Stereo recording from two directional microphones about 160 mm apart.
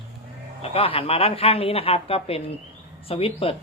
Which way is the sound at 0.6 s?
35° left (ahead or behind).